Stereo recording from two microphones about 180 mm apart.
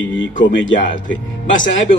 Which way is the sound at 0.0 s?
90° left.